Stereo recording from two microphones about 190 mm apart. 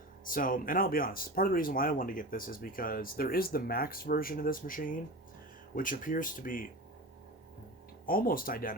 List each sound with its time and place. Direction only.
0.3 s speech: 45° left (ahead or behind)
8.0 s speech: 50° left (ahead or behind)